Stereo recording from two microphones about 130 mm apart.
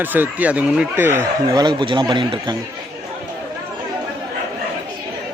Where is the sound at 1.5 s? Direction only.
35° right (ahead or behind).